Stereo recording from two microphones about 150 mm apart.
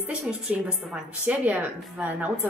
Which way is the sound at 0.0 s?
5° right (ahead or behind).